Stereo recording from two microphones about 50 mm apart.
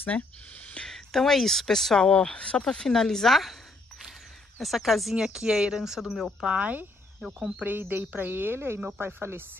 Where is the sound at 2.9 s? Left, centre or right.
Centre.